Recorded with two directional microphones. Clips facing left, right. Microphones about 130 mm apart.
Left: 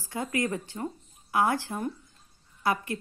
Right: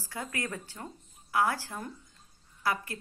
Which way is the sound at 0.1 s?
20° left (ahead or behind).